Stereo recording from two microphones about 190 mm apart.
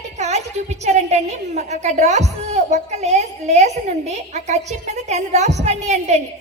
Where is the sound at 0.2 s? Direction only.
35° right (ahead or behind).